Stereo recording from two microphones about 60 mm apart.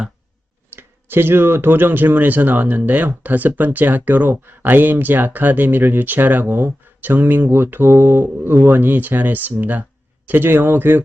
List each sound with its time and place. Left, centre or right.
0.7 s speech: right